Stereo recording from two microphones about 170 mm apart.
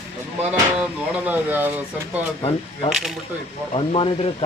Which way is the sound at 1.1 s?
10° right (ahead or behind).